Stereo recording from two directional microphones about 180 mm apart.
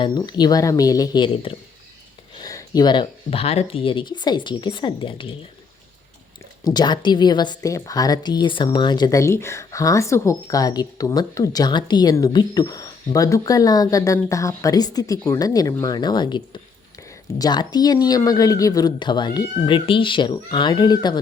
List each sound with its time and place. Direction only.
0.0 s speech: 25° left (ahead or behind)
6.7 s speech: 25° left (ahead or behind)